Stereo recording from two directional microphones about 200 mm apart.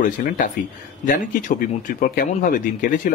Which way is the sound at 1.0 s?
40° left (ahead or behind).